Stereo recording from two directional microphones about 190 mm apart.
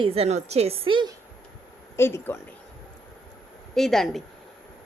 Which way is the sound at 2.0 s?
15° left (ahead or behind).